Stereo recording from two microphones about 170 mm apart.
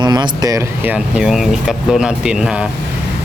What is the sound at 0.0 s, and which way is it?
Speech, 25° right (ahead or behind).